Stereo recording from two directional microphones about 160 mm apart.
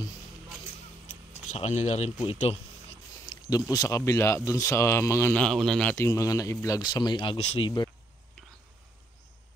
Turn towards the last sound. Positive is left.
turn(degrees=30)  # may be behind; listen again after turning